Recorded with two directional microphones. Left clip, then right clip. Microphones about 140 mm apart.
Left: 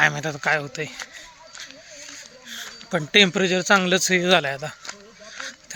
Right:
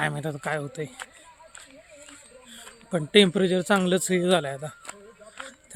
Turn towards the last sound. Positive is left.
turn(degrees=-5)  # may be behind; listen again after turning